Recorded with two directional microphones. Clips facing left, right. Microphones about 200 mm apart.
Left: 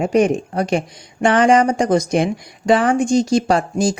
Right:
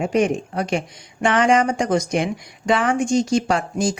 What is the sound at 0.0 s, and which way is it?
Speech, 40° left (ahead or behind).